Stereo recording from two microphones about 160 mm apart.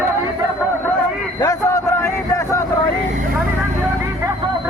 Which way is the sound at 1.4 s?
20° left (ahead or behind).